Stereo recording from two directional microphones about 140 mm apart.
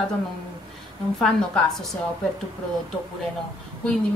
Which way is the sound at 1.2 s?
5° left (ahead or behind).